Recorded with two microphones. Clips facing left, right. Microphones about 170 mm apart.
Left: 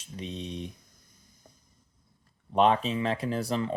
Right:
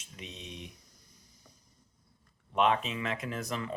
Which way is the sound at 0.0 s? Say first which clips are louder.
Left 9 dB; 30° left (ahead or behind).